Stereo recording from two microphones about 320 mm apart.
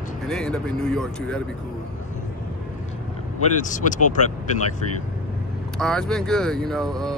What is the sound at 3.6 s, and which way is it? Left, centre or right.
Speech, left.